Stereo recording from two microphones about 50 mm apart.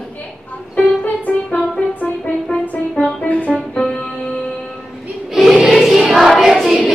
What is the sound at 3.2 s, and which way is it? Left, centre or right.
Music, left.